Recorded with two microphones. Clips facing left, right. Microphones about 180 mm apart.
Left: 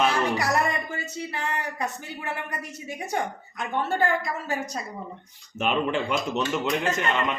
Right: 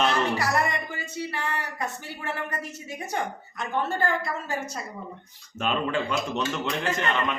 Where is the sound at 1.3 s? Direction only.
20° left (ahead or behind).